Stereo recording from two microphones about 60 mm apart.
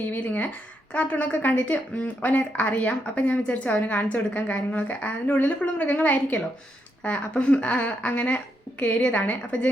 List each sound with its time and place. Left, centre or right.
0.1 s a woman's voice: left